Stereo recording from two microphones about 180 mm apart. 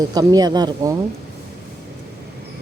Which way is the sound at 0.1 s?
20° right (ahead or behind).